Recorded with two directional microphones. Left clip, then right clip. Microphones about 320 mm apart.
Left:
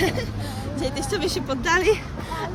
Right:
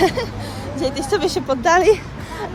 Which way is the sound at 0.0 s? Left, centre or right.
Centre.